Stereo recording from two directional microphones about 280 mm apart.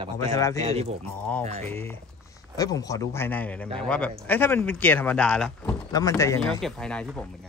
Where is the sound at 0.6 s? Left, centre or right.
Right.